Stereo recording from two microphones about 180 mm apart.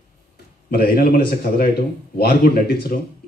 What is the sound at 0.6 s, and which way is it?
Speech, 55° left (ahead or behind).